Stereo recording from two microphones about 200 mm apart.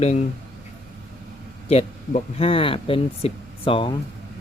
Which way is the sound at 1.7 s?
30° left (ahead or behind).